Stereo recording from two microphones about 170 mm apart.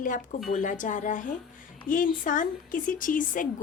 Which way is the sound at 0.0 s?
50° left (ahead or behind).